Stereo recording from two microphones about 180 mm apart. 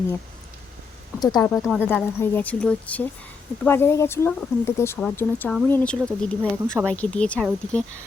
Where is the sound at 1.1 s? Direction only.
20° left (ahead or behind).